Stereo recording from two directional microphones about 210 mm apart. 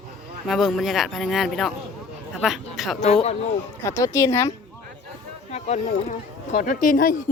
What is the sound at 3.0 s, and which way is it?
Speech, 30° left (ahead or behind).